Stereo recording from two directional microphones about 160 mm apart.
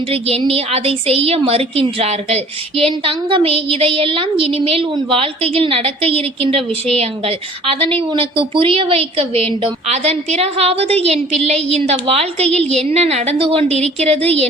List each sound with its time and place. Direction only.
0.1 s a woman's voice: 35° right (ahead or behind)